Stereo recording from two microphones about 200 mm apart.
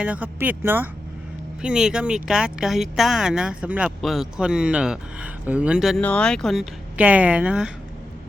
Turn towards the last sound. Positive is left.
turn(degrees=-5)  # may be behind; listen again after turning